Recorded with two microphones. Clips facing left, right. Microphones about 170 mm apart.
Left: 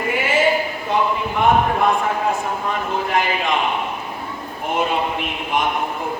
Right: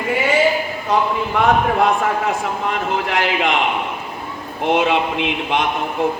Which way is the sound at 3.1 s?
90° right.